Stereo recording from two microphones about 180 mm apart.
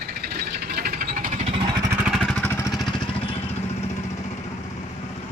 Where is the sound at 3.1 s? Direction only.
30° left (ahead or behind).